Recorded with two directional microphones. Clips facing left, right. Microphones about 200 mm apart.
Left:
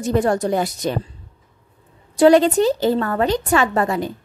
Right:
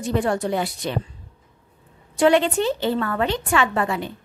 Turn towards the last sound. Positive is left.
turn(degrees=40)  # may be behind; listen again after turning